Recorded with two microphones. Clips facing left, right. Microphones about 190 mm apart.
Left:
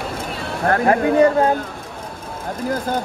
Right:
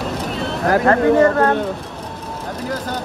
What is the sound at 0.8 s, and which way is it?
Speech, 15° left (ahead or behind).